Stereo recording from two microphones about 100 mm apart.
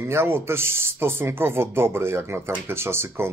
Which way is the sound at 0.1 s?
25° right (ahead or behind).